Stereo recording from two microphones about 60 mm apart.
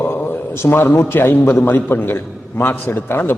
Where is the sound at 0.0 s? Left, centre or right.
Left.